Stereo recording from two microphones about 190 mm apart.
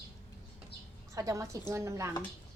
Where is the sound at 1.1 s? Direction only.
15° right (ahead or behind).